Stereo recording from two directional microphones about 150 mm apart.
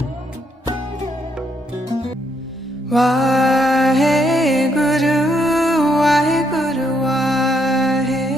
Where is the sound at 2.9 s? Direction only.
Centre (ahead or behind).